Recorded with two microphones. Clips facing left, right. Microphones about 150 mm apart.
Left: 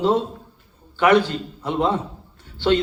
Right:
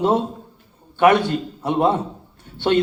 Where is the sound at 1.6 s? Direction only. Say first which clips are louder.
Right 3 dB; 20° right (ahead or behind).